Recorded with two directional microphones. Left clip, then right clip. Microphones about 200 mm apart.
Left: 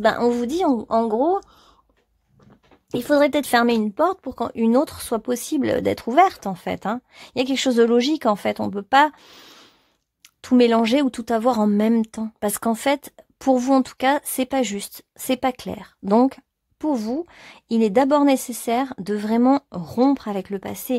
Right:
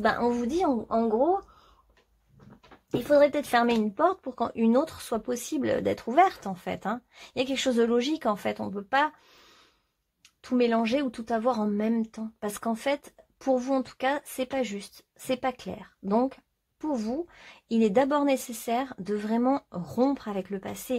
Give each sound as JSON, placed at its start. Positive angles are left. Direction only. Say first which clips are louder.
{"t": 0.0, "sound": "a woman's voice", "louder": "left 7 dB", "side_deg": 45}
{"t": 2.9, "sound": "speech", "louder": "left 3 dB", "side_deg": 45}